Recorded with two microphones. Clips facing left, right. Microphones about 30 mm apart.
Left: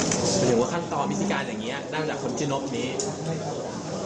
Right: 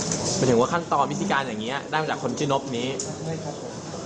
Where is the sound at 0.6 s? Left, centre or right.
Right.